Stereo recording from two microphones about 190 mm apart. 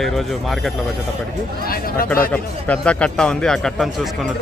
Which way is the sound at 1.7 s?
50° left (ahead or behind).